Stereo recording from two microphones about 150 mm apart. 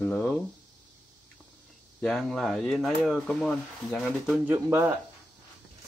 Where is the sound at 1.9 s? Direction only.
5° left (ahead or behind).